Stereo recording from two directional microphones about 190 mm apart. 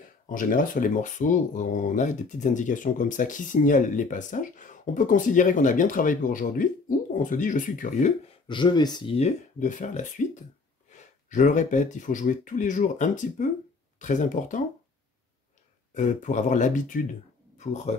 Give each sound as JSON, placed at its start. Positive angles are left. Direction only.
{"t": 0.3, "sound": "speech", "side_deg": 45}
{"t": 8.5, "sound": "speech", "side_deg": 25}
{"t": 15.9, "sound": "speech", "side_deg": 40}